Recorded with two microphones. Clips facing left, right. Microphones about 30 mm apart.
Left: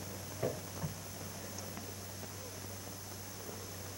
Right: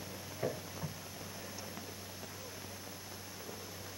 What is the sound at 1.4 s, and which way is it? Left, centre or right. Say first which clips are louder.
Rain: even; centre.